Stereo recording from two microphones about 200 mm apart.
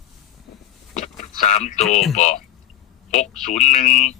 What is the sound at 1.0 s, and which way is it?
Vehicle, 35° left (ahead or behind).